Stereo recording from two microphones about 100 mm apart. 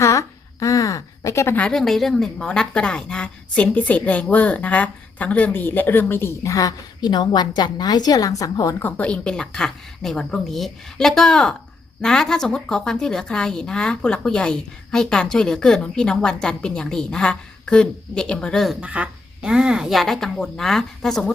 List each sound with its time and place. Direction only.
0.0 s a sound: 30° left (ahead or behind)
1.5 s a woman's voice: 5° left (ahead or behind); by 8.7 s 35° left (ahead or behind)
8.8 s a woman's voice: 15° left (ahead or behind)
18.8 s a woman's voice: 10° right (ahead or behind); by 21.3 s 5° left (ahead or behind)